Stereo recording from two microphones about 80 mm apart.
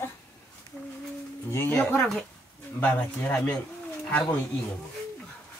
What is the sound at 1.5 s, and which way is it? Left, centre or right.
Speech, left.